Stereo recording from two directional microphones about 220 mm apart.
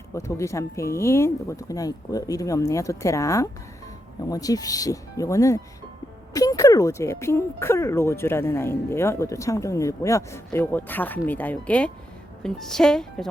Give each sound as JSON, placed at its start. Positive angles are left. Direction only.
{"t": 0.1, "sound": "a woman's voice", "side_deg": 15}